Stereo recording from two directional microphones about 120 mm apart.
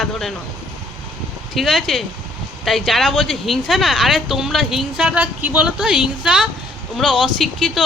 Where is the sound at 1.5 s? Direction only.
Centre (ahead or behind).